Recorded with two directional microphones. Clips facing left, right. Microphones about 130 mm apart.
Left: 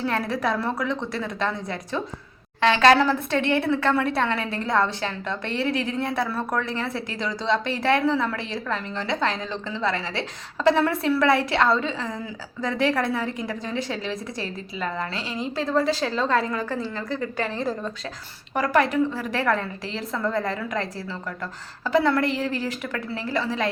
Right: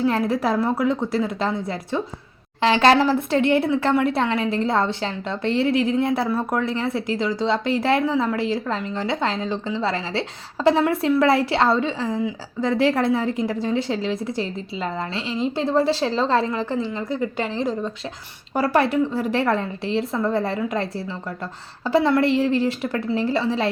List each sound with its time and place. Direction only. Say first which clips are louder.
0.0 s a woman's voice: right 4 dB; 25° right (ahead or behind)